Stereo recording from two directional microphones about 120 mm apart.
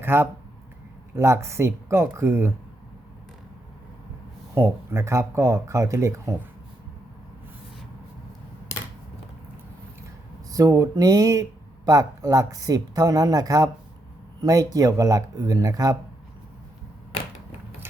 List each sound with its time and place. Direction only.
0.0 s speech: 20° right (ahead or behind)
4.5 s speech: 25° right (ahead or behind)
10.5 s speech: 30° right (ahead or behind)